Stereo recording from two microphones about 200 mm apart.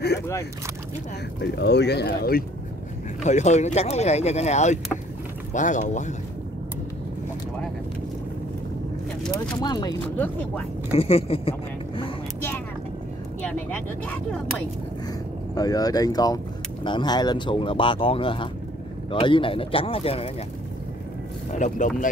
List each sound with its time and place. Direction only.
1.4 s speech: 55° left (ahead or behind)
3.3 s speech: 35° left (ahead or behind)
9.6 s speech: 20° left (ahead or behind)
10.1 s speech: 10° left (ahead or behind)
11.0 s speech: 30° left (ahead or behind)
12.4 s vehicle: 10° left (ahead or behind)
15.5 s speech: 20° left (ahead or behind)
21.5 s speech: 40° left (ahead or behind)